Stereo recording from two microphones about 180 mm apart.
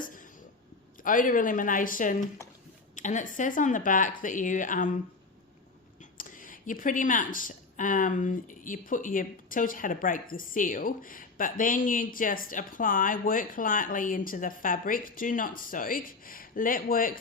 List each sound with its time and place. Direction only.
0.0 s a sound: 50° left (ahead or behind)
1.0 s speech: 50° left (ahead or behind)
6.0 s speech: 50° left (ahead or behind)